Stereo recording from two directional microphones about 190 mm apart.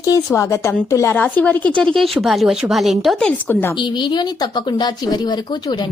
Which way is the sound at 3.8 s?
25° left (ahead or behind).